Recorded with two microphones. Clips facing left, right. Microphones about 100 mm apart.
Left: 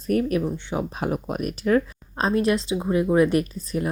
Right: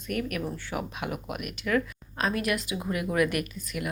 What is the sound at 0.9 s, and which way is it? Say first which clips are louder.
Speech: left 7 dB; 35° left (ahead or behind).